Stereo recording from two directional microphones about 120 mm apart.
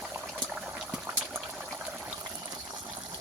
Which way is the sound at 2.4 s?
30° right (ahead or behind).